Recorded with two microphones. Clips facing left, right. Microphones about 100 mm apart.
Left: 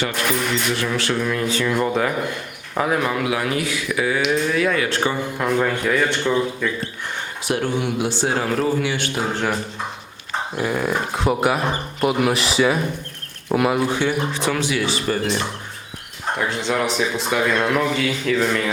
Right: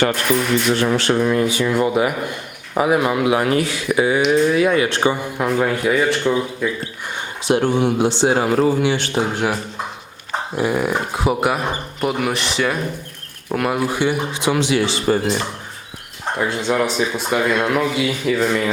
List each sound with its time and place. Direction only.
0.7 s speech: 30° right (ahead or behind); by 3.2 s 10° right (ahead or behind)
3.2 s a man's voice: 30° right (ahead or behind)
5.1 s speech: 10° right (ahead or behind)
7.4 s a man's voice: 25° right (ahead or behind)
9.3 s speech: 10° right (ahead or behind)
10.6 s a man's voice: 10° right (ahead or behind)
16.4 s speech: 15° right (ahead or behind)
16.7 s speech: 5° right (ahead or behind)